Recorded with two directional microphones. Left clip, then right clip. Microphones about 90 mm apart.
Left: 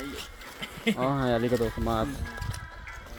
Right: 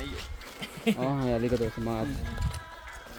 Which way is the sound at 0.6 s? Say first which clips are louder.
Left 1 dB; 25° left (ahead or behind).